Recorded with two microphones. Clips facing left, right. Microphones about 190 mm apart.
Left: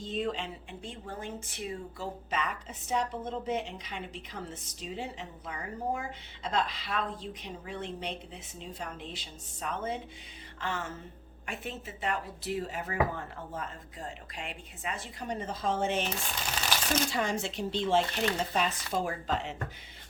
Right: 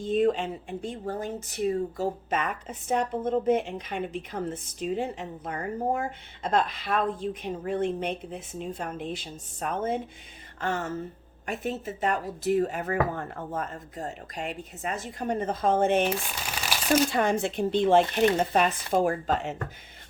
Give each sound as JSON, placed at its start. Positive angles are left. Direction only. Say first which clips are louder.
{"t": 0.0, "sound": "speech", "louder": "right 9 dB", "side_deg": -50}